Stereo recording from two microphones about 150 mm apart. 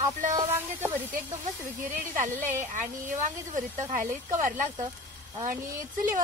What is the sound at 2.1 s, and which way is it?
A woman's voice, 60° right (ahead or behind).